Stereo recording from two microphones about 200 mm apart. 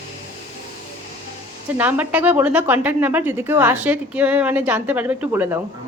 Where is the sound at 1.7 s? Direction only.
10° right (ahead or behind).